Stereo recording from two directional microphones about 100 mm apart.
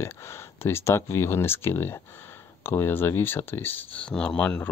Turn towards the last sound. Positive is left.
turn(degrees=15)  # may be behind; listen again after turning